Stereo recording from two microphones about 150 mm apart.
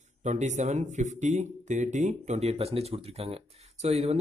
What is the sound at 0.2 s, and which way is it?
Speech, 50° right (ahead or behind).